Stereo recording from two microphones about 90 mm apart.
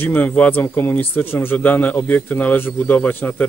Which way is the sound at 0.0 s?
20° left (ahead or behind).